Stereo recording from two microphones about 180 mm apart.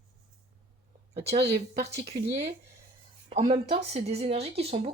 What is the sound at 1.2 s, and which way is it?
Speech, 35° right (ahead or behind).